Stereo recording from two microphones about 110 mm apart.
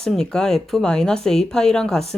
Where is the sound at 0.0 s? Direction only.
5° left (ahead or behind).